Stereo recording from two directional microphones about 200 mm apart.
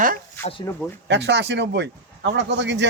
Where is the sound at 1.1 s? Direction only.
60° right (ahead or behind).